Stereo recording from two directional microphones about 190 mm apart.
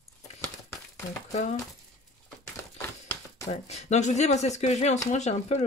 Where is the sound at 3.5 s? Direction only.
35° left (ahead or behind).